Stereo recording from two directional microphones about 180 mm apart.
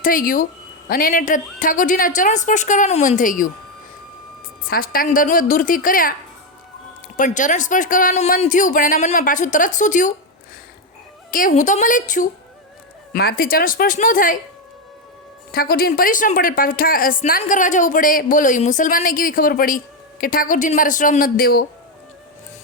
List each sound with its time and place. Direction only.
0.0 s a woman's voice: 50° left (ahead or behind)
4.7 s a woman's voice: 55° left (ahead or behind)
7.2 s a woman's voice: 45° left (ahead or behind)
11.3 s a woman's voice: 50° left (ahead or behind)
13.1 s a woman's voice: 55° left (ahead or behind)
15.5 s a woman's voice: 55° left (ahead or behind)